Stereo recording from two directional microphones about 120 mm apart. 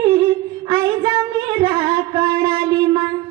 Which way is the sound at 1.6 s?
50° right (ahead or behind).